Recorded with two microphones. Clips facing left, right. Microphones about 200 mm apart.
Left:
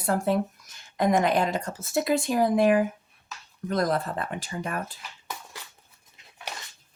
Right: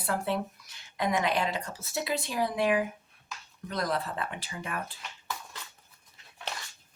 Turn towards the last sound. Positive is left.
turn(degrees=15)  # may be behind; listen again after turning